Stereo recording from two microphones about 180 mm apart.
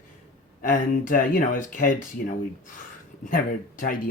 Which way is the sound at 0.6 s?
50° left (ahead or behind).